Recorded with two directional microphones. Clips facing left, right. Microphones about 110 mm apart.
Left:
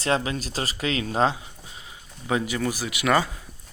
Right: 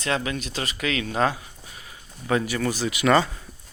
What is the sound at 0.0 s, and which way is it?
Speech, 30° left (ahead or behind).